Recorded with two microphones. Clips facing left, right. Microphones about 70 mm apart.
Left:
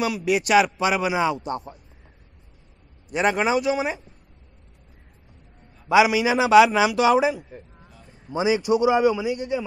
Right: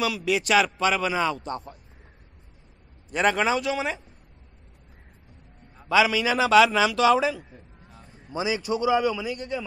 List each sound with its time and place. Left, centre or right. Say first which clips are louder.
0.0 s speech: left 2 dB; centre
3.1 s speech: left 1 dB; centre
5.9 s speech: left 4 dB; centre